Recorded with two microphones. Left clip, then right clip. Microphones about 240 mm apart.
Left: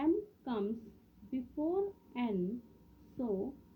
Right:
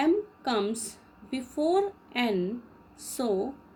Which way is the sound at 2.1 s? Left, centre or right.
Right.